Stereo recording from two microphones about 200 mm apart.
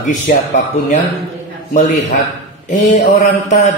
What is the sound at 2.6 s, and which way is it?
Mantra, 40° left (ahead or behind).